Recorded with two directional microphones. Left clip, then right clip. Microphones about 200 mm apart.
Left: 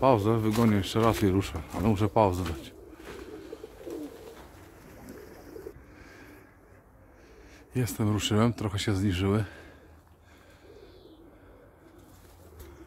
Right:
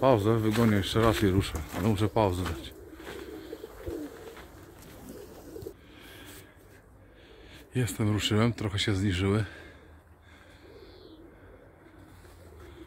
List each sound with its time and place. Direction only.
0.0 s speech: 10° left (ahead or behind)
7.8 s speech: 15° left (ahead or behind)